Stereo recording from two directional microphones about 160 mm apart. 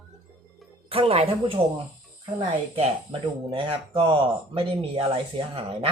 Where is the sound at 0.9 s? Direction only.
35° right (ahead or behind).